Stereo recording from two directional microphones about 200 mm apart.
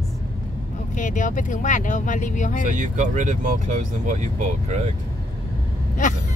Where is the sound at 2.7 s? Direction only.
40° right (ahead or behind).